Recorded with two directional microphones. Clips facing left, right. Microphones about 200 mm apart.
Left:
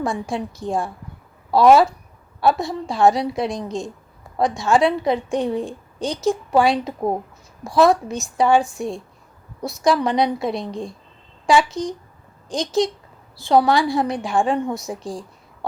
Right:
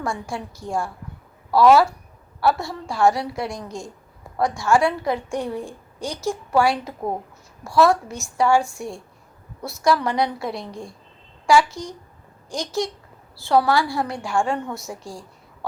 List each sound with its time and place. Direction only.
0.0 s a woman's voice: 20° left (ahead or behind)